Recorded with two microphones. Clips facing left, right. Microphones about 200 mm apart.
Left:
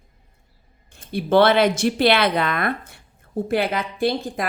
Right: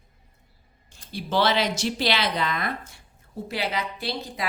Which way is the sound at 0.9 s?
55° left (ahead or behind).